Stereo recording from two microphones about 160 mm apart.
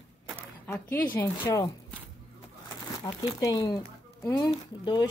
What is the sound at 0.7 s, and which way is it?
A woman's voice, 15° left (ahead or behind).